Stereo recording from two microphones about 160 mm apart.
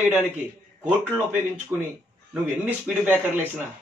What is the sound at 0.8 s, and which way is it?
A man's voice, 10° right (ahead or behind).